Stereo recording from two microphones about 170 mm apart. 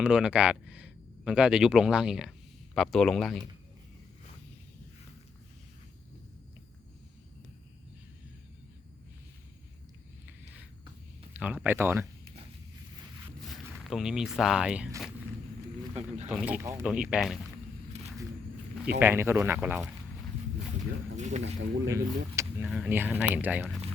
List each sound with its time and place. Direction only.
0.0 s speech: 5° right (ahead or behind)
11.3 s speech: 10° right (ahead or behind)
13.5 s speech: centre (ahead or behind)
16.0 s speech: 45° right (ahead or behind)
16.3 s speech: 10° right (ahead or behind)
18.9 s speech: 15° right (ahead or behind)
21.2 s speech: 45° right (ahead or behind)
21.8 s speech: 15° right (ahead or behind)